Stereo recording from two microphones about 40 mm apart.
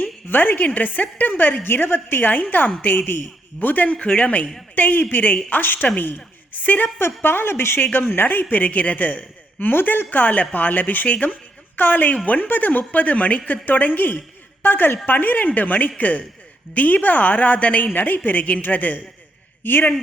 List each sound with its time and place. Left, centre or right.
0.0 s a woman's voice: left
2.2 s a man's voice: left
3.8 s a woman's voice: left
4.7 s a man's voice: left
7.0 s a woman's voice: left
7.9 s a man's voice: left
14.6 s a woman's voice: left
17.9 s a man's voice: left
19.6 s a woman's voice: left